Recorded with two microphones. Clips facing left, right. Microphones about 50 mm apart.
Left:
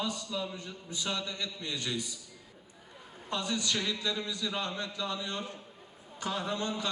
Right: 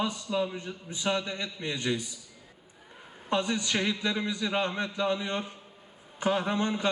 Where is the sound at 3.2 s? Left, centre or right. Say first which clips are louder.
Right 5 dB; right.